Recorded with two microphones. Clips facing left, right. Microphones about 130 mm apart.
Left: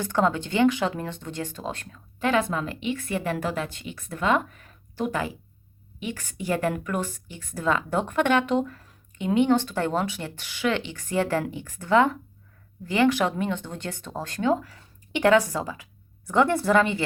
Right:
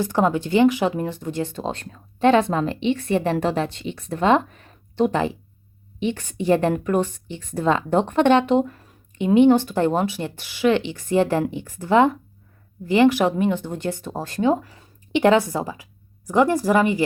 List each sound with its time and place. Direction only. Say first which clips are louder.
0.0 s a woman's voice: right 4 dB; 20° right (ahead or behind)
1.5 s a woman's voice: right 5 dB; 25° right (ahead or behind)